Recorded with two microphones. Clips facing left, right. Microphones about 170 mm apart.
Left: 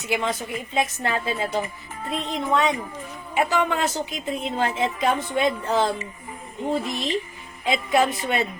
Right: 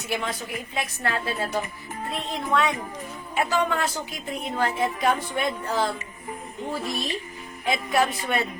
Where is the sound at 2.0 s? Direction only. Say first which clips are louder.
Left 3 dB; 20° right (ahead or behind).